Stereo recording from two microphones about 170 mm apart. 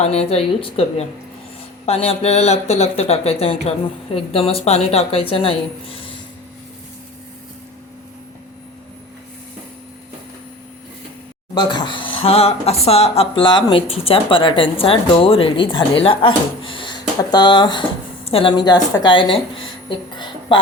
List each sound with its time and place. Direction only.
0.0 s speech: 40° left (ahead or behind)
11.5 s a woman's voice: 25° left (ahead or behind)